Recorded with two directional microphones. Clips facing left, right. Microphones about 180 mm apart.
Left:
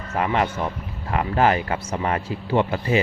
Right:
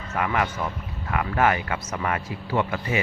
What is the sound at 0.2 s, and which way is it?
Speech, 30° left (ahead or behind).